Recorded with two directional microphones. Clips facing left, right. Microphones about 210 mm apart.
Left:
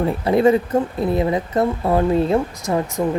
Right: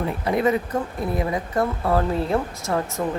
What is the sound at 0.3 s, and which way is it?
Speech, 30° left (ahead or behind).